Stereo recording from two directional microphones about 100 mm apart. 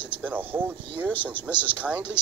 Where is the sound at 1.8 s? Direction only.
15° right (ahead or behind).